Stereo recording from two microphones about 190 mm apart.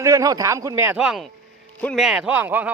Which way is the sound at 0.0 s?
15° right (ahead or behind).